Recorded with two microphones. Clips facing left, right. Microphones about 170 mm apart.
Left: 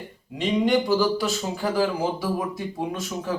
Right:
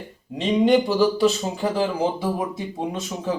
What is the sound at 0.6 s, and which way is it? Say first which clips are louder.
Speech: right 4 dB; 25° right (ahead or behind).